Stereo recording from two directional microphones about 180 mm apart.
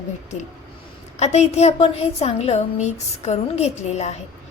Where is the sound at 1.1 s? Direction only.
35° left (ahead or behind).